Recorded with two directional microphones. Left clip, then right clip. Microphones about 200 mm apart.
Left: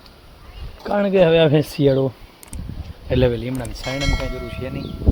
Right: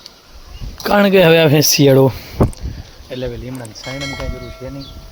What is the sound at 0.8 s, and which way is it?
Speech, 35° right (ahead or behind).